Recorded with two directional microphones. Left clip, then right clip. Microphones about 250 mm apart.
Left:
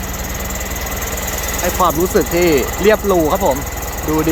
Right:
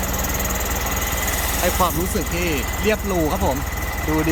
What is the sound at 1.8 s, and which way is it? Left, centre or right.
Speech, centre.